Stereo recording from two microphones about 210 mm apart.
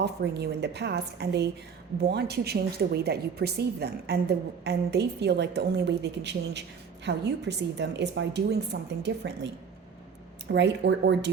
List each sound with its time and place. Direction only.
0.0 s a woman's voice: 50° right (ahead or behind)
10.5 s a woman's voice: 55° right (ahead or behind)